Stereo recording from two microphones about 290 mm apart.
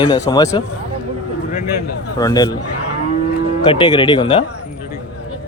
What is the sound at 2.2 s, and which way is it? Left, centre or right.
Speech, centre.